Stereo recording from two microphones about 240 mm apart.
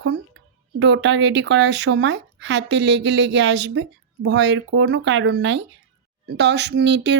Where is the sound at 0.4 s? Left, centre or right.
Right.